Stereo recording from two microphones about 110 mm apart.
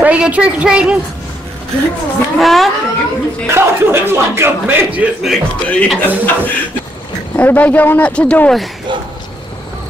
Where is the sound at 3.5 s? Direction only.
20° right (ahead or behind).